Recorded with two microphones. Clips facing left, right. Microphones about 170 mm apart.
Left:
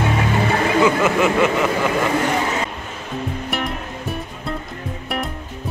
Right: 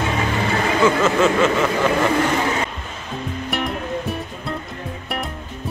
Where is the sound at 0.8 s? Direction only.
15° left (ahead or behind).